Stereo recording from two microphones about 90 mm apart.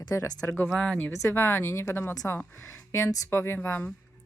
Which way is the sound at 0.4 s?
25° left (ahead or behind).